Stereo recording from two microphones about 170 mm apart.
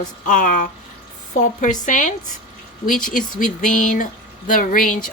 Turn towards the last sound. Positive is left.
turn(degrees=55)  # may be behind; listen again after turning